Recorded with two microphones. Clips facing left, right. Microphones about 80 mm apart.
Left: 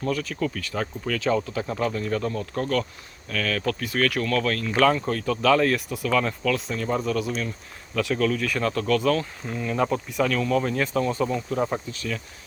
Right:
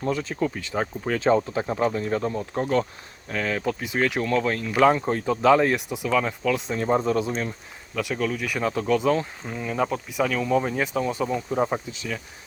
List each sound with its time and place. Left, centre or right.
0.0 s speech: right
7.9 s speech: centre
9.5 s speech: centre